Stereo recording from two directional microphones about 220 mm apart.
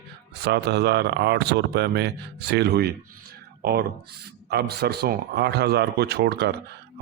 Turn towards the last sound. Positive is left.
turn(degrees=-45)  # may be behind; listen again after turning